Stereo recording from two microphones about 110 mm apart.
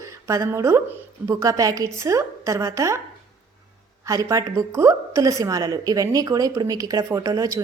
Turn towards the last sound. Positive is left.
turn(degrees=-30)  # may be behind; listen again after turning